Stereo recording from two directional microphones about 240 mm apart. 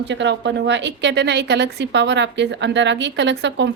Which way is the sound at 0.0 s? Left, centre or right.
Right.